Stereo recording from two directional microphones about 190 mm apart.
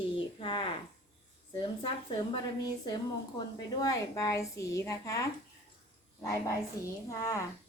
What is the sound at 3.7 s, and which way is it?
A woman's voice, 20° left (ahead or behind).